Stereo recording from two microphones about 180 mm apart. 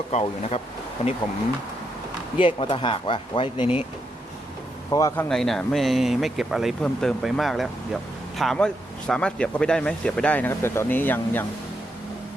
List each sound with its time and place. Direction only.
0.1 s speech: 35° left (ahead or behind)
2.6 s speech: 30° left (ahead or behind)
4.9 s speech: 15° left (ahead or behind)
5.3 s speech: 5° left (ahead or behind)